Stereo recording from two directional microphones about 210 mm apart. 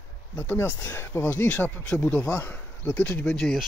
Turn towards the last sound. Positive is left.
turn(degrees=5)  # may be behind; listen again after turning